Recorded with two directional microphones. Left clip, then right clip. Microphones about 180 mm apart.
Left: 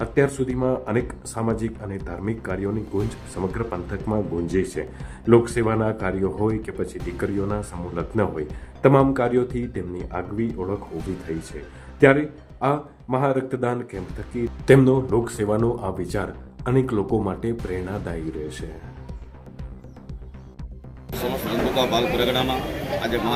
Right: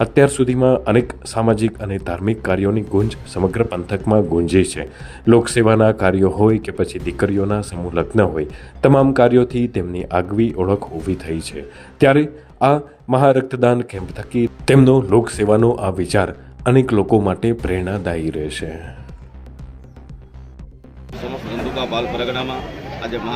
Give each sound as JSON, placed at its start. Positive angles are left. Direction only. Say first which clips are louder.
{"t": 0.0, "sound": "speech", "louder": "right 8 dB", "side_deg": -45}
{"t": 3.5, "sound": "speech", "louder": "right 9 dB", "side_deg": -50}
{"t": 11.3, "sound": "speech", "louder": "right 5 dB", "side_deg": -60}
{"t": 11.9, "sound": "speech", "louder": "right 3 dB", "side_deg": -45}
{"t": 21.8, "sound": "a man's voice", "louder": "even", "side_deg": 15}